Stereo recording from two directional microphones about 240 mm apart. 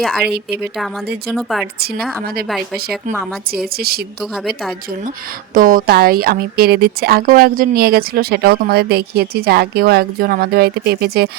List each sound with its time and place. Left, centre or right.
0.3 s speech: right
1.3 s a woman's voice: centre
2.2 s speech: right
2.9 s a woman's voice: centre
3.5 s speech: right
4.2 s a woman's voice: centre
5.5 s speech: right